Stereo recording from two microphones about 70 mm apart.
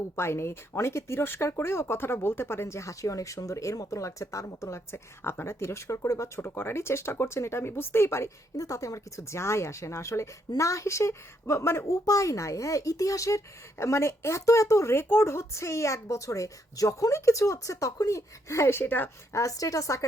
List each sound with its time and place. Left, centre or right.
0.2 s speech: left
4.9 s speech: left
8.5 s speech: left
11.9 s speech: left
19.3 s speech: left